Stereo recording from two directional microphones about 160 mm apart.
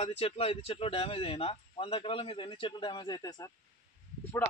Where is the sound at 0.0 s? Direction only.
40° left (ahead or behind).